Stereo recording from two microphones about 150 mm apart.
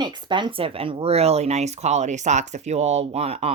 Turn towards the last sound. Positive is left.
turn(degrees=-45)  # may be behind; listen again after turning